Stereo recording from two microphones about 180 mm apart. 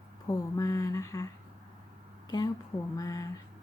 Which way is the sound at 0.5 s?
20° left (ahead or behind).